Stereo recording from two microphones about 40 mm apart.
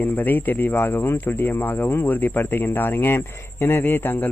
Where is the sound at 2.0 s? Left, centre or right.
Left.